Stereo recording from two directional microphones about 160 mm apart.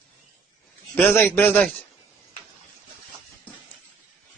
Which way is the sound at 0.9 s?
15° left (ahead or behind).